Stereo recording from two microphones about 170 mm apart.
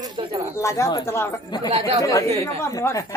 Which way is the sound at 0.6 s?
15° left (ahead or behind).